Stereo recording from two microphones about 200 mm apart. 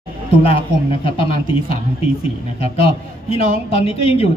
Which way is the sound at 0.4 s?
30° left (ahead or behind).